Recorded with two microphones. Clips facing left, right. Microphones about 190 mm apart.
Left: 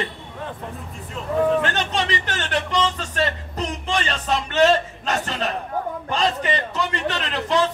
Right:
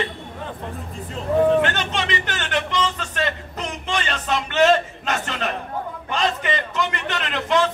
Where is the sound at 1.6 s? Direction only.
35° left (ahead or behind).